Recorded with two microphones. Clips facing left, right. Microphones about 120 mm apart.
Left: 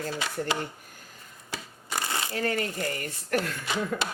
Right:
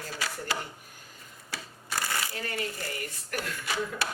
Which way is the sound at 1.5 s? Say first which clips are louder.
Left 2 dB; 20° left (ahead or behind).